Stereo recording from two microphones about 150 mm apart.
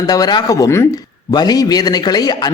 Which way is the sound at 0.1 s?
25° left (ahead or behind).